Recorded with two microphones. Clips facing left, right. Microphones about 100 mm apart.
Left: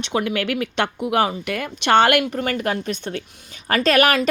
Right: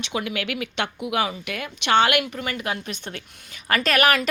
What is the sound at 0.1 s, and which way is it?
Speech, 45° left (ahead or behind).